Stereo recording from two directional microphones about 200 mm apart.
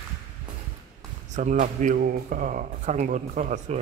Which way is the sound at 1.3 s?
40° right (ahead or behind).